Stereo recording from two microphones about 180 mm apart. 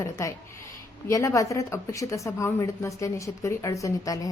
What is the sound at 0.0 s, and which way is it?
A woman's voice, 15° left (ahead or behind).